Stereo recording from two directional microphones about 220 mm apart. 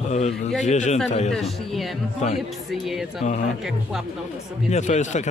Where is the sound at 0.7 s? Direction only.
30° left (ahead or behind).